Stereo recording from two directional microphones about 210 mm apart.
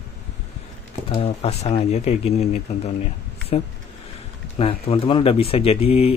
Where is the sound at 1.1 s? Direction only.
30° left (ahead or behind).